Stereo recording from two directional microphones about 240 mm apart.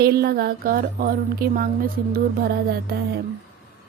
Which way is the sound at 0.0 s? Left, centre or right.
Right.